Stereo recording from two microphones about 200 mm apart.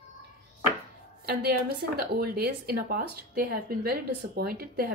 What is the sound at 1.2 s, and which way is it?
A woman's voice, 50° right (ahead or behind).